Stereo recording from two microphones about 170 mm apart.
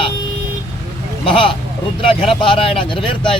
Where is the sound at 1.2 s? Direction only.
30° left (ahead or behind).